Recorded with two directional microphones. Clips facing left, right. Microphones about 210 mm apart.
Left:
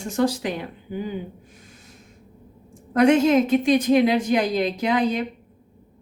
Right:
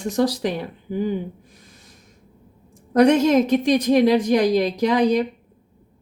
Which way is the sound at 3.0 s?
40° right (ahead or behind).